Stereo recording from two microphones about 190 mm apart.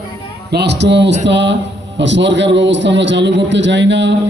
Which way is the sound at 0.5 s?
60° right (ahead or behind).